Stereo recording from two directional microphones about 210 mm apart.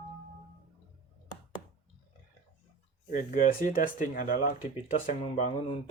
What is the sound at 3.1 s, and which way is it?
Speech, 40° left (ahead or behind).